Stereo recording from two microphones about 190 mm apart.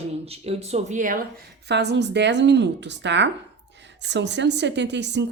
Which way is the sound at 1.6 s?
60° right (ahead or behind).